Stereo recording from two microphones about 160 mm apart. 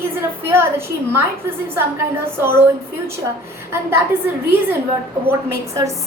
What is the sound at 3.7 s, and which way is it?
A woman's voice, 15° right (ahead or behind).